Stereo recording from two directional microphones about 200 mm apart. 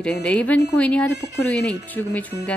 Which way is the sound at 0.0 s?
5° left (ahead or behind).